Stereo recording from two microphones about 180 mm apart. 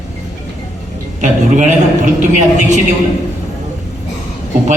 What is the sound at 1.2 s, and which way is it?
Speech, 45° right (ahead or behind).